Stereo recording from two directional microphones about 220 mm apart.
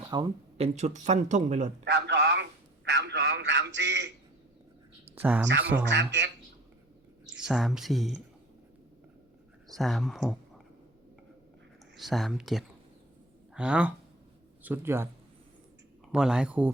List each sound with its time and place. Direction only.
0.1 s speech: 20° right (ahead or behind)
0.8 s speech: 30° right (ahead or behind)
1.8 s a sound: 50° right (ahead or behind)
5.1 s speech: 10° right (ahead or behind)
5.8 s a man's voice: 50° right (ahead or behind)
7.3 s speech: centre (ahead or behind)
9.7 s speech: centre (ahead or behind)
11.9 s a man's voice: centre (ahead or behind)
16.1 s speech: 5° right (ahead or behind)